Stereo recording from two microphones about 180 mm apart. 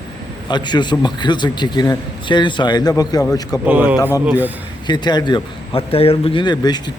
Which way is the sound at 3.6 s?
10° right (ahead or behind).